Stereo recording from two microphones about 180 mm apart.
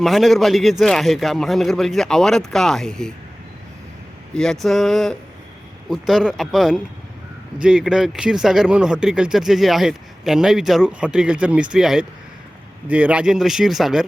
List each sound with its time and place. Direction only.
0.0 s speech: centre (ahead or behind)
4.4 s speech: centre (ahead or behind)